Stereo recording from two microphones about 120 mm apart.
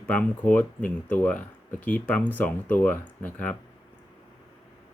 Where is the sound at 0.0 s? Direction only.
10° left (ahead or behind).